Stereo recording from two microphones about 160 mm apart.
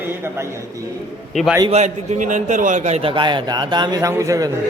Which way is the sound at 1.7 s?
45° right (ahead or behind).